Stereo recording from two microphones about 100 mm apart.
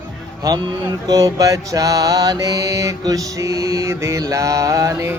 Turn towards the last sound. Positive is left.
turn(degrees=-30)  # may be behind; listen again after turning